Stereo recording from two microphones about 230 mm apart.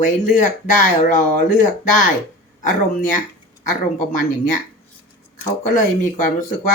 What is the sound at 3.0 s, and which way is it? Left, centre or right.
Speech, left.